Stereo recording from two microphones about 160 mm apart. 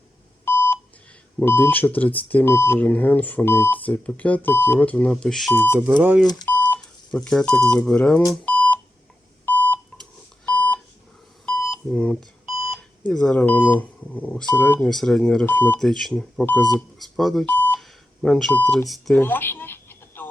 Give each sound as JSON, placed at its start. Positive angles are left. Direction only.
{"t": 0.4, "sound": "beep", "side_deg": 15}
{"t": 1.4, "sound": "speech", "side_deg": 10}
{"t": 5.8, "sound": "speech", "side_deg": -10}
{"t": 6.7, "sound": "speech", "side_deg": 5}
{"t": 8.3, "sound": "beep", "side_deg": 10}
{"t": 12.6, "sound": "speech", "side_deg": 5}
{"t": 17.7, "sound": "telephone dialing", "side_deg": 0}
{"t": 18.9, "sound": "speech", "side_deg": 0}
{"t": 19.2, "sound": "a sound", "side_deg": 10}